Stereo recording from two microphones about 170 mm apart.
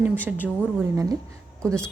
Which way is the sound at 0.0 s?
10° right (ahead or behind).